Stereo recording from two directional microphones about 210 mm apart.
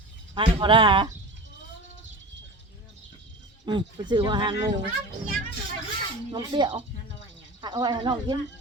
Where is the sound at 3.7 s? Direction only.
20° right (ahead or behind).